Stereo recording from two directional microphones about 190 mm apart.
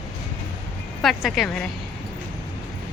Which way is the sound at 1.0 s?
Centre (ahead or behind).